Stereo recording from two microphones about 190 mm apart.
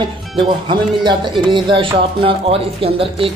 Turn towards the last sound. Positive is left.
turn(degrees=-30)  # may be behind; listen again after turning